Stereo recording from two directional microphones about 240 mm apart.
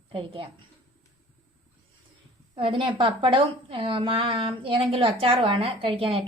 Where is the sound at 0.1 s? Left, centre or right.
Right.